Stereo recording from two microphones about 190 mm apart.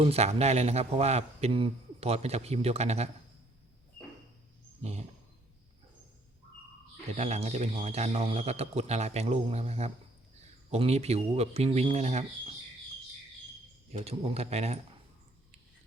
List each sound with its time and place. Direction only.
0.0 s speech: 35° right (ahead or behind)
4.8 s a sound: 35° right (ahead or behind)
7.2 s speech: 35° right (ahead or behind)
13.9 s speech: 30° right (ahead or behind)